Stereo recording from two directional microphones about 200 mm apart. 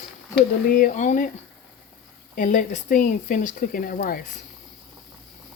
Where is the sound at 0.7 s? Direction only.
40° left (ahead or behind).